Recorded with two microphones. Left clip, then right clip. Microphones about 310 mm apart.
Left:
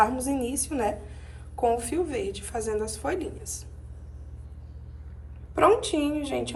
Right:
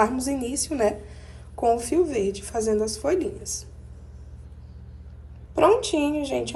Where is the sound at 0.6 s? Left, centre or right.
Centre.